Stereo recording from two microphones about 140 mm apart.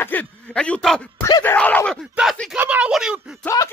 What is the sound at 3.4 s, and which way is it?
Speech, 20° left (ahead or behind).